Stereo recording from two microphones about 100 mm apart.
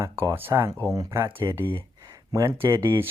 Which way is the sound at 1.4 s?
25° right (ahead or behind).